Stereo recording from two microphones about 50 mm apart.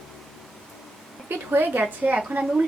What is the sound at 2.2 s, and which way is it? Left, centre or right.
Speech, right.